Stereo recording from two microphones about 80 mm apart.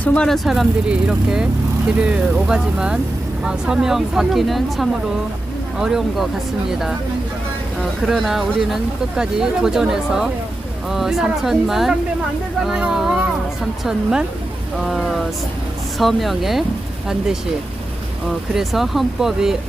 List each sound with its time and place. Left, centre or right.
0.0 s speech: centre
0.3 s speech: centre
18.3 s speech: centre